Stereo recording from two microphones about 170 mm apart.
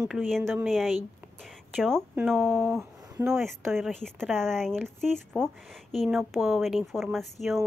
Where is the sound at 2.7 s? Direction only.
15° right (ahead or behind).